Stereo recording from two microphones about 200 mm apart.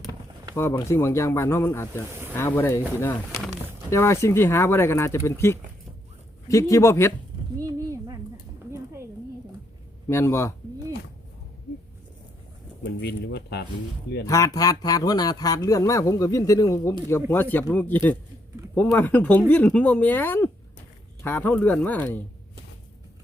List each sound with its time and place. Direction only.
0.5 s speech: 15° left (ahead or behind)
7.6 s a sound: 15° right (ahead or behind)
10.1 s speech: 15° left (ahead or behind)
12.8 s speech: 55° left (ahead or behind)
14.3 s speech: 15° left (ahead or behind)